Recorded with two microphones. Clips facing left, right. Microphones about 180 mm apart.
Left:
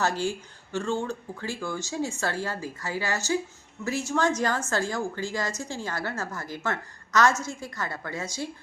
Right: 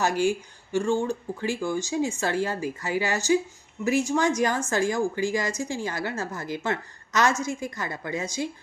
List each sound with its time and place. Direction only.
0.0 s a woman's voice: 15° right (ahead or behind)